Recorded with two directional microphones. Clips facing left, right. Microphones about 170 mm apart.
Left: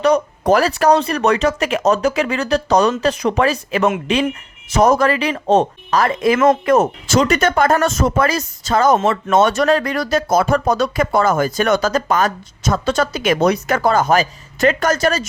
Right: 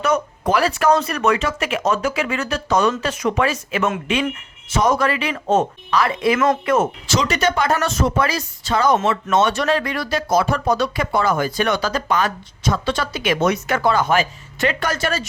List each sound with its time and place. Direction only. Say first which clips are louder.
0.0 s speech: left 5 dB; 35° left (ahead or behind)
7.2 s speech: left 5 dB; 55° left (ahead or behind)